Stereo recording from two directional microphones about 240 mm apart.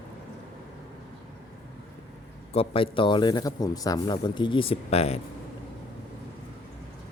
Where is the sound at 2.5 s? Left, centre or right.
Left.